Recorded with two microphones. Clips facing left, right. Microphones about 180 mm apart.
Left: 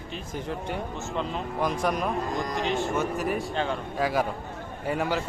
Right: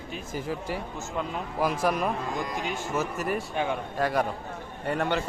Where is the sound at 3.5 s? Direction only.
10° right (ahead or behind).